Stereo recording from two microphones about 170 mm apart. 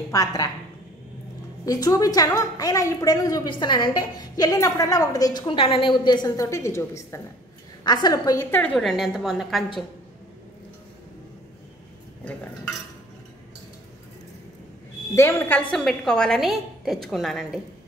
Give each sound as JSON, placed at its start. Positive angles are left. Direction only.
{"t": 0.1, "sound": "a woman's voice", "side_deg": 20}
{"t": 1.7, "sound": "a woman's voice", "side_deg": 20}
{"t": 15.1, "sound": "a woman's voice", "side_deg": 15}